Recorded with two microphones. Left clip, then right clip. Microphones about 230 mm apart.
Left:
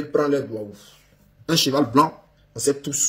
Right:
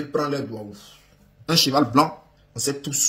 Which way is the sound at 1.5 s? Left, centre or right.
Centre.